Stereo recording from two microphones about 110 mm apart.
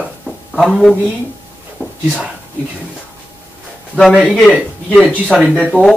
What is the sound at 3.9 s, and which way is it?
A man's voice, 10° left (ahead or behind).